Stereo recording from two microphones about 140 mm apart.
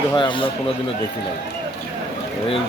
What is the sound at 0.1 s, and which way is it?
Speech, 35° left (ahead or behind).